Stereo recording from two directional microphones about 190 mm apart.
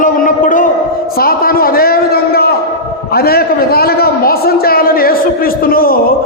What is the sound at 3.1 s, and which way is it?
A man's voice, 55° left (ahead or behind).